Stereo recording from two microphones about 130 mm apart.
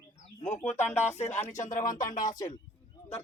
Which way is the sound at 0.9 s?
60° left (ahead or behind).